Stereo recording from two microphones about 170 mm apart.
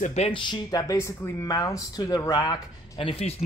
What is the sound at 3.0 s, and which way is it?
Speech, 35° left (ahead or behind).